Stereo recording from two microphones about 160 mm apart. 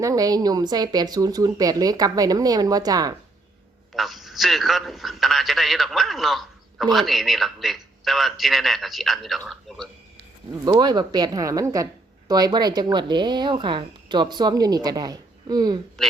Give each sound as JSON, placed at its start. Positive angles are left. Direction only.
{"t": 0.0, "sound": "speech", "side_deg": -20}
{"t": 3.9, "sound": "a man's voice", "side_deg": 0}
{"t": 10.7, "sound": "speech", "side_deg": -25}